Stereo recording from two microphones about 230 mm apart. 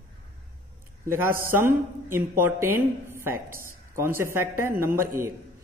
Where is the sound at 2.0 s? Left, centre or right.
Centre.